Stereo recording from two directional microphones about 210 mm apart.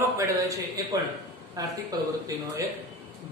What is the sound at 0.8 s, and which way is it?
A woman's voice, 15° right (ahead or behind).